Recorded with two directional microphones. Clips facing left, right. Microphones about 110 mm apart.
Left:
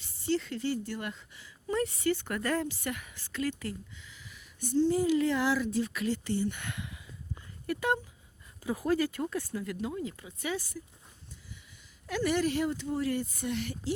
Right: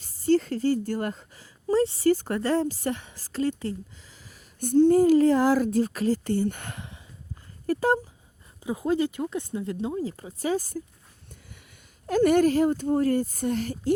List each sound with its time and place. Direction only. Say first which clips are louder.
0.0 s a woman's voice: right 9 dB; 40° right (ahead or behind)
4.7 s speech: right 9 dB; 55° right (ahead or behind); by 8.0 s 35° right (ahead or behind)
8.6 s speech: right 4 dB; 20° right (ahead or behind); by 10.8 s 45° right (ahead or behind)
12.0 s speech: right 9 dB; 45° right (ahead or behind)